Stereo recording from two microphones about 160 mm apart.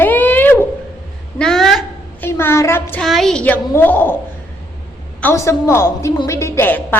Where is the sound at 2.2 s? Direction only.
15° left (ahead or behind).